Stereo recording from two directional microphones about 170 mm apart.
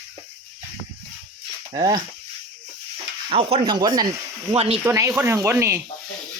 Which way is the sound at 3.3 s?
35° right (ahead or behind).